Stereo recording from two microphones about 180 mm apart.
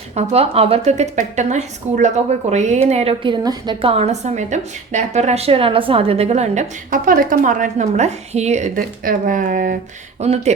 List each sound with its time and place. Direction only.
0.2 s a woman's voice: 35° right (ahead or behind)
10.2 s a woman's voice: 35° right (ahead or behind)